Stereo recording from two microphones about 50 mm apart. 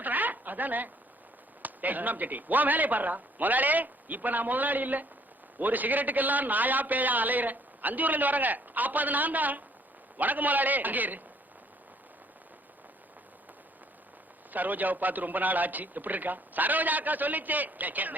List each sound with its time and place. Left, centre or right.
0.0 s a sound: right
1.6 s a man's voice: right
14.5 s a man's voice: right